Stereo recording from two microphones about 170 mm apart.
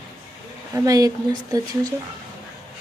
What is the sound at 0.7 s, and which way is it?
Speech, 20° right (ahead or behind).